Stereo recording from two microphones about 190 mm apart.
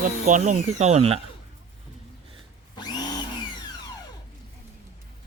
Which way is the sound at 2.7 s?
20° left (ahead or behind).